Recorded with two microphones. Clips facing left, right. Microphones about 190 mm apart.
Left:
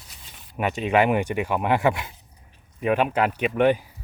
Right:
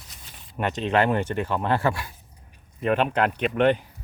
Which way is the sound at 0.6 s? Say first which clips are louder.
Left 2 dB; 10° left (ahead or behind).